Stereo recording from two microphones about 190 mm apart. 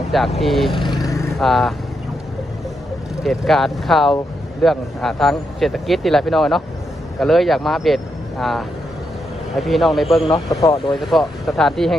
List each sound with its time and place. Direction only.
0.1 s speech: centre (ahead or behind)
0.9 s vehicle: 20° left (ahead or behind)
1.4 s speech: centre (ahead or behind)
3.2 s speech: centre (ahead or behind)